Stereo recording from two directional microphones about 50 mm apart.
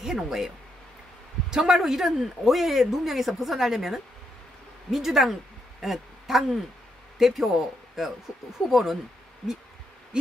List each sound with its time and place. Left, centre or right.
0.0 s speech: centre
1.5 s a man's voice: centre